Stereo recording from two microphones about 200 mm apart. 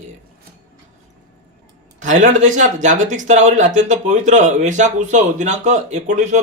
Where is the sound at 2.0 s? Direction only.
40° right (ahead or behind).